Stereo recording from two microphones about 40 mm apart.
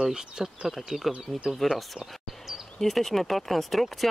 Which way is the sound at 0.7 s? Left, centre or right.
Centre.